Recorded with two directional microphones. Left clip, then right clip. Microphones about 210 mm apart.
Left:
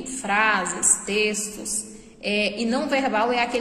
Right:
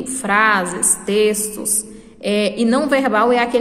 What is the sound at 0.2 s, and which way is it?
A woman's voice, 15° right (ahead or behind).